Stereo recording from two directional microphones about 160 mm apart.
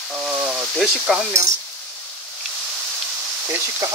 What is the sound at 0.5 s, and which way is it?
Speech, 5° right (ahead or behind).